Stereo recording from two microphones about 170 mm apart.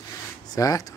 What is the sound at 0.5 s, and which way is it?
Speech, 20° left (ahead or behind).